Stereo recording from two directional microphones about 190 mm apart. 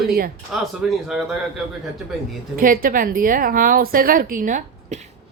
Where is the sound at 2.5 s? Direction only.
50° right (ahead or behind).